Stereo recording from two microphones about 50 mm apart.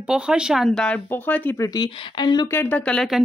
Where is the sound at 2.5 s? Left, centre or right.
Left.